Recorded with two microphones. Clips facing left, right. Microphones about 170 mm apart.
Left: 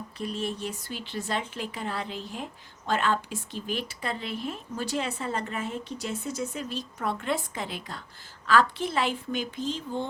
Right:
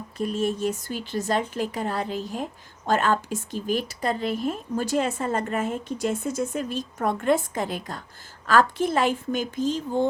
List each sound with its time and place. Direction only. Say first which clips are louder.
0.2 s speech: right 7 dB; 45° right (ahead or behind)